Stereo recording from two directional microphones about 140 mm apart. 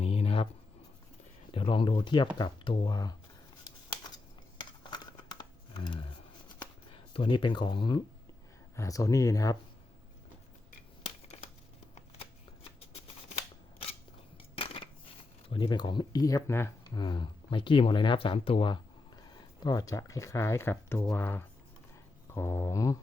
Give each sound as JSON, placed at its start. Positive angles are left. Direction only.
{"t": 0.0, "sound": "writing", "side_deg": 45}
{"t": 1.5, "sound": "speech", "side_deg": 35}
{"t": 4.8, "sound": "a sound", "side_deg": 35}
{"t": 6.9, "sound": "speech", "side_deg": 40}
{"t": 8.7, "sound": "speech", "side_deg": 25}
{"t": 11.9, "sound": "shuffling cards", "side_deg": 45}
{"t": 14.5, "sound": "a sound", "side_deg": 40}
{"t": 15.4, "sound": "speech", "side_deg": 35}
{"t": 16.9, "sound": "speech", "side_deg": 35}